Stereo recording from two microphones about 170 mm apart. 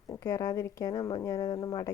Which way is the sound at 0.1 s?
20° left (ahead or behind).